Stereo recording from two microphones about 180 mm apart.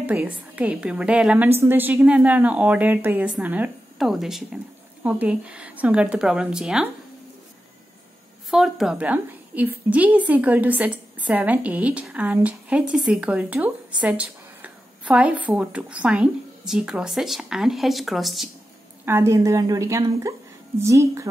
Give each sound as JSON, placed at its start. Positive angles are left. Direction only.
{"t": 0.0, "sound": "a woman's voice", "side_deg": -10}
{"t": 8.5, "sound": "a woman's voice", "side_deg": 0}
{"t": 19.0, "sound": "a woman's voice", "side_deg": -15}